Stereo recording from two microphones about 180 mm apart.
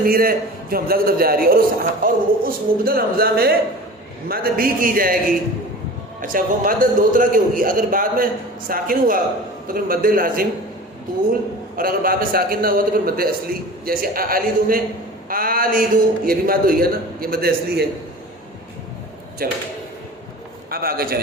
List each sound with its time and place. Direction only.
0.0 s a man's voice: 55° right (ahead or behind)
6.2 s a man's voice: 50° right (ahead or behind)
11.8 s a man's voice: 55° right (ahead or behind)
19.4 s a man's voice: 55° right (ahead or behind)
20.7 s a man's voice: 55° right (ahead or behind)